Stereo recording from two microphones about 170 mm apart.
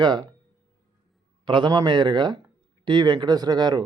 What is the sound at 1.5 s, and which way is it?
Speech, 25° right (ahead or behind).